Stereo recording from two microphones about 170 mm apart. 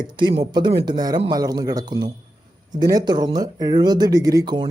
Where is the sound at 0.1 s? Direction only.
25° right (ahead or behind).